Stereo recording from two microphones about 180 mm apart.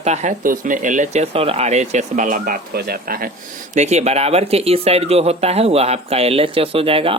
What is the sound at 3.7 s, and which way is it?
Speech, 40° right (ahead or behind).